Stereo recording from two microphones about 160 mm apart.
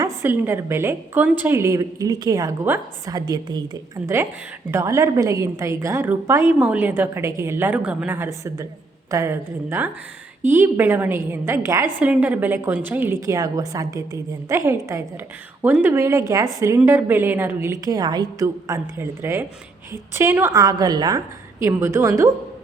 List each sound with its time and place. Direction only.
0.0 s a woman's voice: 15° right (ahead or behind)